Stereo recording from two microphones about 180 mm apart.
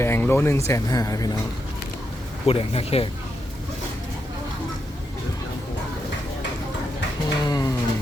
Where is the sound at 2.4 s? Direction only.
35° left (ahead or behind).